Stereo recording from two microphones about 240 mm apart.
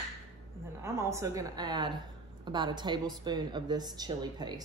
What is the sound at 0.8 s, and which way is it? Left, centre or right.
Speech, centre.